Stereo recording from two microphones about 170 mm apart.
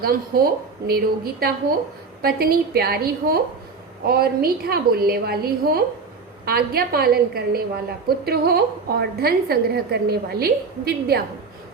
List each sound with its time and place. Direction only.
0.0 s a woman's voice: 60° right (ahead or behind)